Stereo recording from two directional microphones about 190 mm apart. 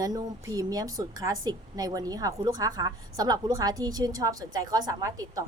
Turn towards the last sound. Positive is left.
turn(degrees=-15)  # may be behind; listen again after turning